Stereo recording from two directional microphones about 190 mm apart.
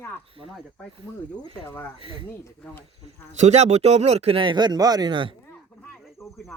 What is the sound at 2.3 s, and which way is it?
Speech, 10° left (ahead or behind).